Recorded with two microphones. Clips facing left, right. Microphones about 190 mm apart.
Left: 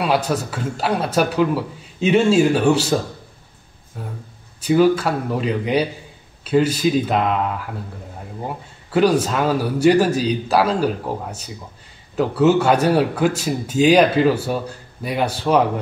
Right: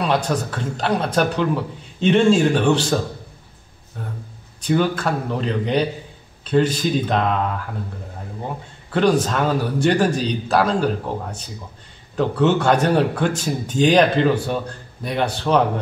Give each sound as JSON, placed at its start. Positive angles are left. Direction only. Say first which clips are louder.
{"t": 0.0, "sound": "speech", "louder": "left 1 dB", "side_deg": 5}
{"t": 8.9, "sound": "speech", "louder": "left 1 dB", "side_deg": 5}